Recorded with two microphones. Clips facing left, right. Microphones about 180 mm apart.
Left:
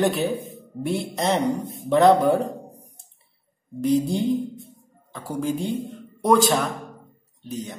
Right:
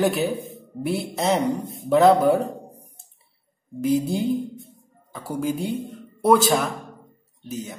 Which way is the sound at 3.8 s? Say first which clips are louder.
Left 1 dB; 5° right (ahead or behind).